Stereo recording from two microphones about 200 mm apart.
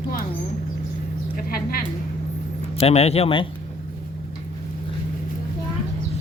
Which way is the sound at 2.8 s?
30° left (ahead or behind).